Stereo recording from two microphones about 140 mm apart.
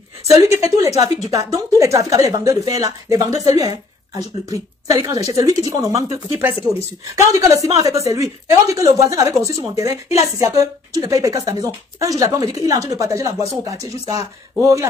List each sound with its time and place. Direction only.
0.3 s a woman's voice: 25° right (ahead or behind)
0.6 s a woman's voice: 45° left (ahead or behind)
1.3 s a woman's voice: 25° right (ahead or behind)
7.2 s a woman's voice: 25° right (ahead or behind)